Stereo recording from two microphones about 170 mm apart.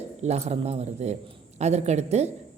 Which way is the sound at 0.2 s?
40° right (ahead or behind).